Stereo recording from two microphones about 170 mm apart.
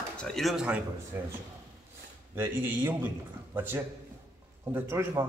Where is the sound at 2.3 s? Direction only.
15° right (ahead or behind).